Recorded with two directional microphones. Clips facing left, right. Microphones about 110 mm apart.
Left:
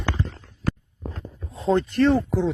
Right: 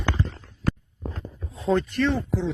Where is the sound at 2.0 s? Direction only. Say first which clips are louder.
Left 5 dB; 40° left (ahead or behind).